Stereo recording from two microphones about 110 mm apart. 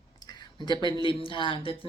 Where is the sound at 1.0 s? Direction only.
50° left (ahead or behind).